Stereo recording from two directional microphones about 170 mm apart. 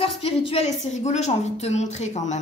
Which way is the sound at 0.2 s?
35° left (ahead or behind).